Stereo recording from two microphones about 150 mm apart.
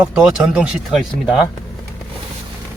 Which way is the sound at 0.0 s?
5° right (ahead or behind).